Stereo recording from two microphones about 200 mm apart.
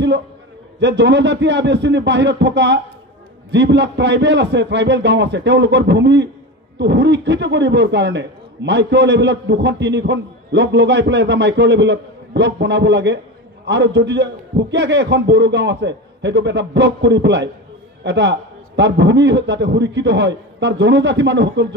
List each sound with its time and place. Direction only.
0.7 s a man's voice: 60° right (ahead or behind)